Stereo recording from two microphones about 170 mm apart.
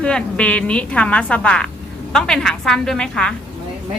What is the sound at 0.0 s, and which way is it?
A woman's voice, 5° left (ahead or behind).